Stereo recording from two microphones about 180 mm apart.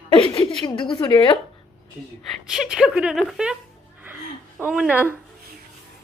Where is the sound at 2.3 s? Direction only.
Centre (ahead or behind).